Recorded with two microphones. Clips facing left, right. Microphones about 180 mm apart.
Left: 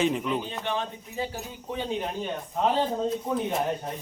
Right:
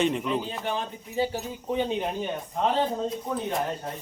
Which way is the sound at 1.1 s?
30° right (ahead or behind).